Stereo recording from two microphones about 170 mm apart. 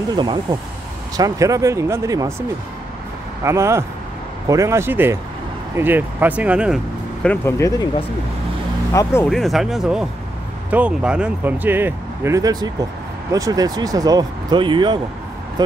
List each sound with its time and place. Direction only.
0.1 s speech: 25° right (ahead or behind)
3.4 s speech: 15° right (ahead or behind)
7.2 s speech: 15° left (ahead or behind)
8.9 s speech: 15° left (ahead or behind)
9.3 s speech: centre (ahead or behind); by 15.0 s 30° right (ahead or behind)